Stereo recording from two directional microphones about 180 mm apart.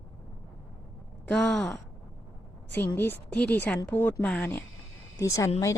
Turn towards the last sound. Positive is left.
turn(degrees=15)  # may be behind; listen again after turning